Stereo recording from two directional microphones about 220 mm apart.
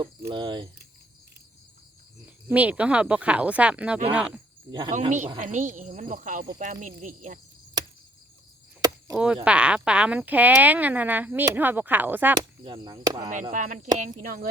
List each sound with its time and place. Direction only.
0.3 s speech: 20° right (ahead or behind)
2.2 s speech: 5° right (ahead or behind)
4.9 s speech: 35° right (ahead or behind)
9.1 s speech: 5° right (ahead or behind)
12.6 s speech: 20° right (ahead or behind)
13.5 s speech: 35° right (ahead or behind)